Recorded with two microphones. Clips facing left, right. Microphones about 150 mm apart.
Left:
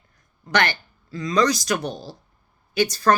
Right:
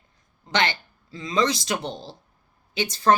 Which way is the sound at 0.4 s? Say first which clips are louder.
Left 2 dB; 20° right (ahead or behind).